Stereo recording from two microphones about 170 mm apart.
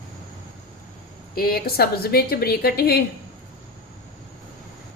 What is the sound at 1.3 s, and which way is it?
A woman's voice, 60° left (ahead or behind).